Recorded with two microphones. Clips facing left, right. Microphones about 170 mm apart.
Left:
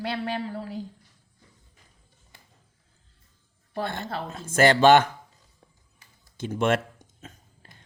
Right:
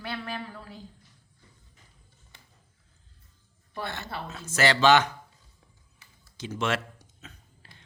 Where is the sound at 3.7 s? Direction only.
50° left (ahead or behind).